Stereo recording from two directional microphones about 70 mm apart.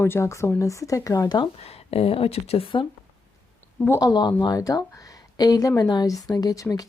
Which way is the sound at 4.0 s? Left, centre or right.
Left.